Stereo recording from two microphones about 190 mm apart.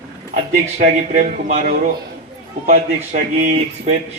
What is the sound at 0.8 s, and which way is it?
Speech, 40° right (ahead or behind).